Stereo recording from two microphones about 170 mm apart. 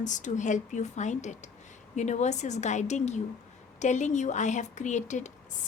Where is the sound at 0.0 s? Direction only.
45° left (ahead or behind).